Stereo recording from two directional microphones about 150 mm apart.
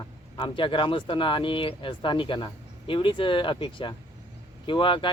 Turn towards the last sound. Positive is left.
turn(degrees=35)  # may be behind; listen again after turning